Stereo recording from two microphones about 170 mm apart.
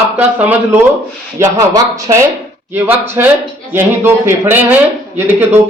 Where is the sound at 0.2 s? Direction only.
10° right (ahead or behind).